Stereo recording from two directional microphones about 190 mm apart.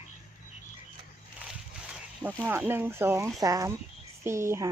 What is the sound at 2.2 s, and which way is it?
Speech, 10° right (ahead or behind).